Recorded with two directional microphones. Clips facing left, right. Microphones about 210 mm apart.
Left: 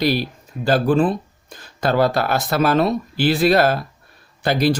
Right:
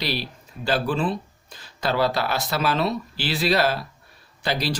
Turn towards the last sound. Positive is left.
turn(degrees=50)  # may be behind; listen again after turning